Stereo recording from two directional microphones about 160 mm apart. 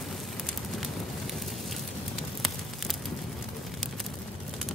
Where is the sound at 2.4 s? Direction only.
Centre (ahead or behind).